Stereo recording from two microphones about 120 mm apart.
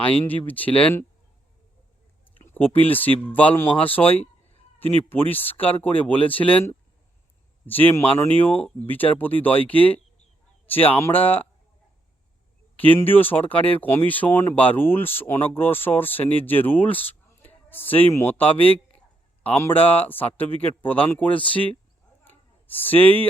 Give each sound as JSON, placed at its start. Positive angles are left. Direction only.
{"t": 0.0, "sound": "speech", "side_deg": 15}
{"t": 2.4, "sound": "speech", "side_deg": 15}
{"t": 5.0, "sound": "speech", "side_deg": 15}
{"t": 12.7, "sound": "speech", "side_deg": 15}
{"t": 22.2, "sound": "a sound", "side_deg": 15}